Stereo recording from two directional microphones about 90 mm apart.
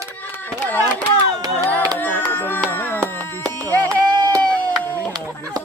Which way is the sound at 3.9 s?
45° right (ahead or behind).